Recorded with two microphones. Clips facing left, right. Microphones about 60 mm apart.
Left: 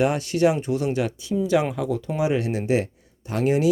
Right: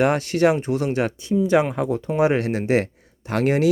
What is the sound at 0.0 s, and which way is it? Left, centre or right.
Speech, right.